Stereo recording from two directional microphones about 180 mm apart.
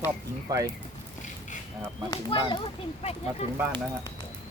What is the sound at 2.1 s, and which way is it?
Speech, 30° left (ahead or behind).